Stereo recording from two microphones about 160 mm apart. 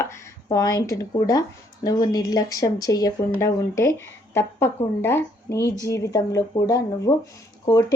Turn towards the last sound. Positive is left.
turn(degrees=20)  # may be behind; listen again after turning